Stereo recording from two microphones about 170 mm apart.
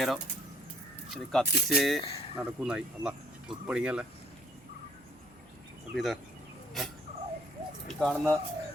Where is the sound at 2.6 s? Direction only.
5° right (ahead or behind).